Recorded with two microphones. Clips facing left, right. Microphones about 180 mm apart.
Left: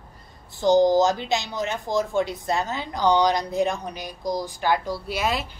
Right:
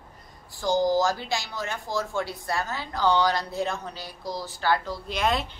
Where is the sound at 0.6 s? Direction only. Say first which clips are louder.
Left 5 dB; 20° left (ahead or behind).